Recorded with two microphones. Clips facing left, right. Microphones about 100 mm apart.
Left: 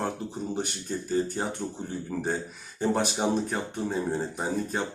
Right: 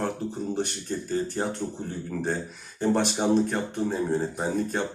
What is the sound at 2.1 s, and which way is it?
Speech, 20° left (ahead or behind).